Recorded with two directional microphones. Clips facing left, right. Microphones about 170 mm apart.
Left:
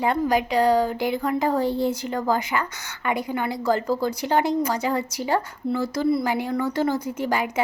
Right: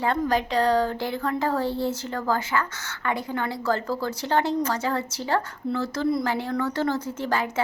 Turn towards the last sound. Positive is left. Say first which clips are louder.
# left 2 dB
turn(degrees=15)  # may be behind; listen again after turning